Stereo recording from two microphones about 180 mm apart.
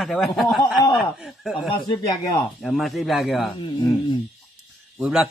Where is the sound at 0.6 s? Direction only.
25° left (ahead or behind).